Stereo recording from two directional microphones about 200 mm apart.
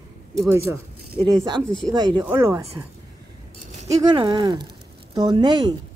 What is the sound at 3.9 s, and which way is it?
Speech, 25° right (ahead or behind).